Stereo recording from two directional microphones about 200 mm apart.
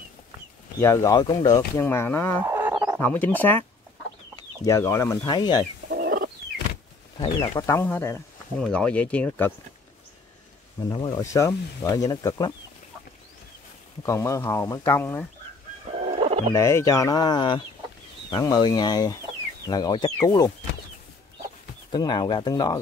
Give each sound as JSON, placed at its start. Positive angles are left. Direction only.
{"t": 0.7, "sound": "speech", "side_deg": 15}
{"t": 2.4, "sound": "a sound", "side_deg": -10}
{"t": 3.0, "sound": "speech", "side_deg": 10}
{"t": 4.6, "sound": "speech", "side_deg": 15}
{"t": 5.9, "sound": "chicken", "side_deg": -50}
{"t": 7.2, "sound": "speech", "side_deg": 20}
{"t": 10.8, "sound": "speech", "side_deg": 20}
{"t": 14.0, "sound": "speech", "side_deg": 15}
{"t": 16.0, "sound": "fowl", "side_deg": -30}
{"t": 16.5, "sound": "speech", "side_deg": 15}
{"t": 21.9, "sound": "speech", "side_deg": 20}